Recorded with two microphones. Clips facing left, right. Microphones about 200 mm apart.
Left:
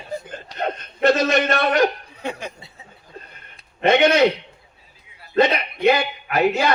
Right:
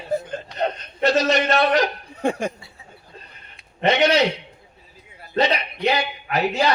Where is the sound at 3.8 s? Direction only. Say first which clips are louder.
Left 2 dB; 50° left (ahead or behind).